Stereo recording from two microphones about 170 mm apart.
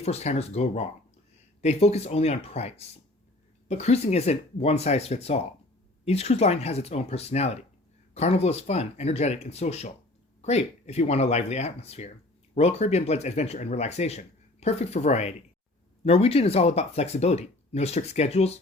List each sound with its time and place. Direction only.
0.0 s speech: 40° left (ahead or behind)